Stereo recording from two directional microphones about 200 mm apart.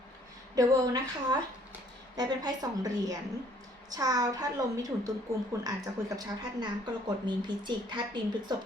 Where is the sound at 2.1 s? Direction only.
20° right (ahead or behind).